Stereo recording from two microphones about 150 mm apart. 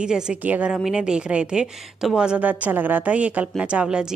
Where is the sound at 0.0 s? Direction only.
5° right (ahead or behind).